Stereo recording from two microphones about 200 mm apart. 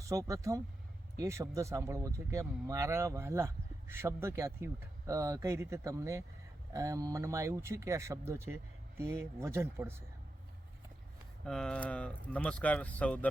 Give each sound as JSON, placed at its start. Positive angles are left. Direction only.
{"t": 0.1, "sound": "speech", "side_deg": -15}
{"t": 11.4, "sound": "speech", "side_deg": 5}